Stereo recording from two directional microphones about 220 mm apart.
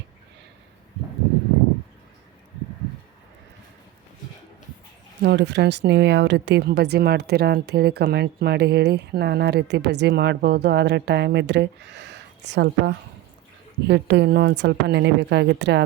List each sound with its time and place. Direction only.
5.2 s a woman's voice: 50° right (ahead or behind)